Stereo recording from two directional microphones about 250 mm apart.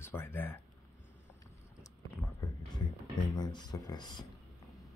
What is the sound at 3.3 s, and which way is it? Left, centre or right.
Speech, centre.